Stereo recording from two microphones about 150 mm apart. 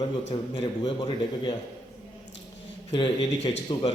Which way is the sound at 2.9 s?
30° left (ahead or behind).